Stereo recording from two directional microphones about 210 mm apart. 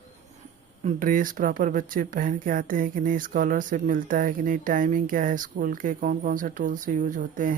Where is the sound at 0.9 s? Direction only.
40° right (ahead or behind).